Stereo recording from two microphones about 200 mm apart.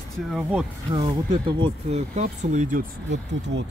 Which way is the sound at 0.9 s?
25° right (ahead or behind).